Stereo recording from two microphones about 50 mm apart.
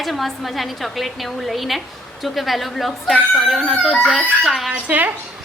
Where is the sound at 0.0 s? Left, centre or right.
Centre.